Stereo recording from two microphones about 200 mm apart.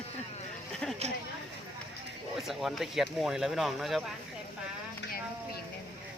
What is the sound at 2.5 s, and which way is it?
Speech, centre (ahead or behind).